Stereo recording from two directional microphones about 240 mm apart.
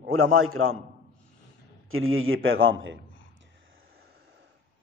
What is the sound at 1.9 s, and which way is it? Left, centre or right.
A man's voice, right.